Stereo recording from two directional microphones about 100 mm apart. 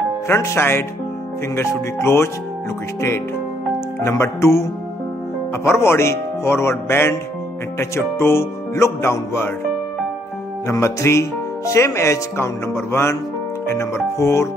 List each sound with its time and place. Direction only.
0.3 s speech: 25° left (ahead or behind)
4.0 s speech: 30° left (ahead or behind)
10.7 s speech: 30° left (ahead or behind)